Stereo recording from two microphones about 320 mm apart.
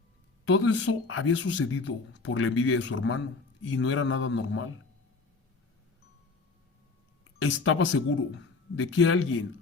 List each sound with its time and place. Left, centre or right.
0.4 s speech: left
7.4 s speech: left